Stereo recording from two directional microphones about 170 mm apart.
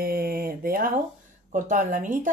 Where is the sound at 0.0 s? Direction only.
60° right (ahead or behind).